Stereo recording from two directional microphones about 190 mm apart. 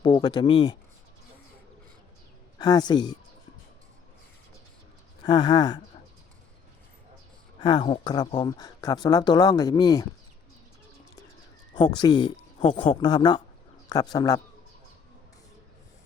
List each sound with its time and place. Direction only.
0.0 s speech: 25° left (ahead or behind)
2.6 s speech: 20° left (ahead or behind)
5.2 s speech: 20° left (ahead or behind)
7.6 s speech: 25° left (ahead or behind)
11.7 s speech: 20° left (ahead or behind)